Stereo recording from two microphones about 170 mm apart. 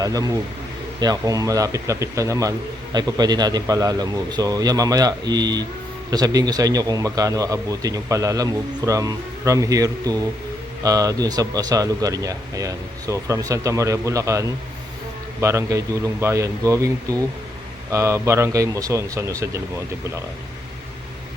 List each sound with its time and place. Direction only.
0.0 s a man's voice: 20° right (ahead or behind)